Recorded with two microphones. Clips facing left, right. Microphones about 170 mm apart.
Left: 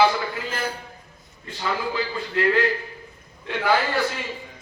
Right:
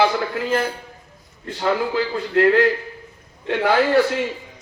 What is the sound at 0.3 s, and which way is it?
A man's voice, 55° right (ahead or behind).